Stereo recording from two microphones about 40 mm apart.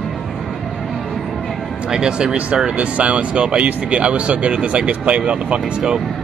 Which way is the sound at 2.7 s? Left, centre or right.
Right.